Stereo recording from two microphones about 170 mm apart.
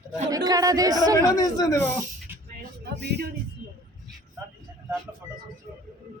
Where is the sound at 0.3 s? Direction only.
20° right (ahead or behind).